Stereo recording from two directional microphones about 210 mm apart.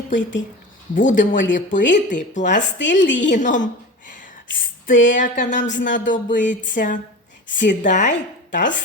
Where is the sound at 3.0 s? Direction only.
60° left (ahead or behind).